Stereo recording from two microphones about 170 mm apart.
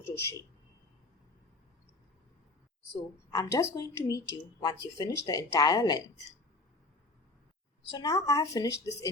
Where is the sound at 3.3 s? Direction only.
20° left (ahead or behind).